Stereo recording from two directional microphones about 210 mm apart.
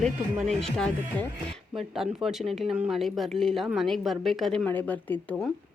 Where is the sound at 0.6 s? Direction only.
5° left (ahead or behind).